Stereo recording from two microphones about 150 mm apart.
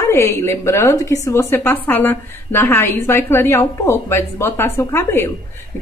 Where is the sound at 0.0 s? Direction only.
15° left (ahead or behind).